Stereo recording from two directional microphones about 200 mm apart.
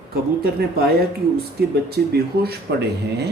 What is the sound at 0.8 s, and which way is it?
Speech, 50° right (ahead or behind).